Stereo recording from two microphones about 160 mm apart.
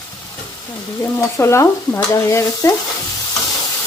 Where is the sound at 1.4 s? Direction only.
15° left (ahead or behind).